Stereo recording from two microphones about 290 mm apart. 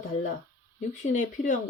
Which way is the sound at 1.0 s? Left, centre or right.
Left.